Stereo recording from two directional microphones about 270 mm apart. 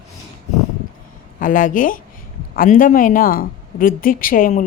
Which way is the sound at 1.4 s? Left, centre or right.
Left.